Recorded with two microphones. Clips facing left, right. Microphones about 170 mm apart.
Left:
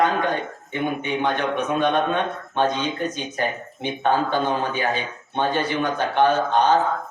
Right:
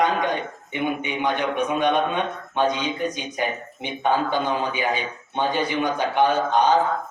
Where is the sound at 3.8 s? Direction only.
15° right (ahead or behind).